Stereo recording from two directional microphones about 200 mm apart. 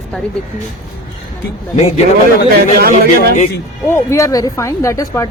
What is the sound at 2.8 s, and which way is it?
Speech, 50° right (ahead or behind).